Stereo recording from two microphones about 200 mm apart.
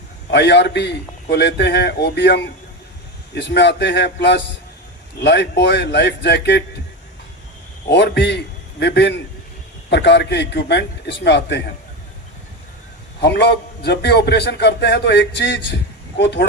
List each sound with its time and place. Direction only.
0.3 s a man's voice: 60° left (ahead or behind)
7.9 s a man's voice: 55° left (ahead or behind)
13.2 s a man's voice: 55° left (ahead or behind)